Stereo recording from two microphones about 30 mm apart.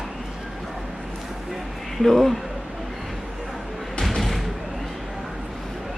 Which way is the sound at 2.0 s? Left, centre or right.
Centre.